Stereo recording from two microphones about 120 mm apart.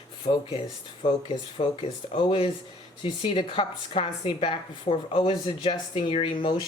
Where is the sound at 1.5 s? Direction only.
50° left (ahead or behind).